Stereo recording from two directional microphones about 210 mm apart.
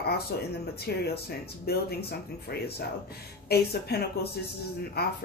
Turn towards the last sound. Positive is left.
turn(degrees=50)  # may be behind; listen again after turning